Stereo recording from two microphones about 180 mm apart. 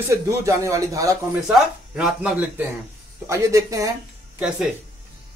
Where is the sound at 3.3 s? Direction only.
15° right (ahead or behind).